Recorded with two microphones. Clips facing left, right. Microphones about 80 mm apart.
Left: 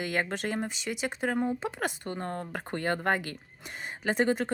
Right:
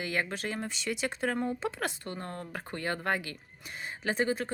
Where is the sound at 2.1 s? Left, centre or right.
Left.